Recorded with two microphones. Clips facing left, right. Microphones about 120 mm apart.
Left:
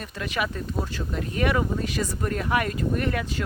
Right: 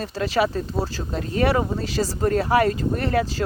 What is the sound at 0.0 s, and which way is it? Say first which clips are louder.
Speech: right 7 dB; 30° right (ahead or behind).